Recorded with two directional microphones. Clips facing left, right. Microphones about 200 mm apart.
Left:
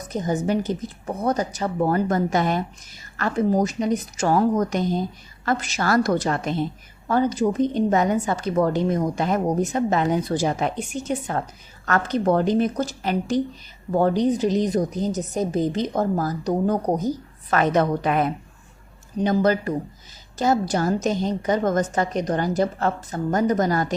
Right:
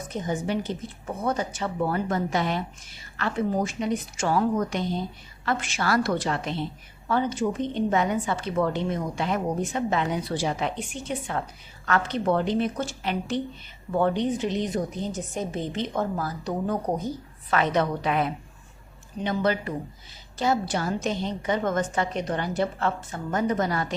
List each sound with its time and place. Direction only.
0.0 s a woman's voice: 40° left (ahead or behind)